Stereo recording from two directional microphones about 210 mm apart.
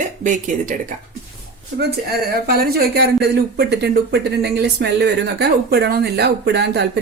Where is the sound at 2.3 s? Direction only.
45° right (ahead or behind).